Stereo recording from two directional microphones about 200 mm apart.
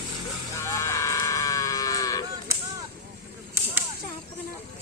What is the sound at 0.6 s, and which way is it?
Music, 15° left (ahead or behind).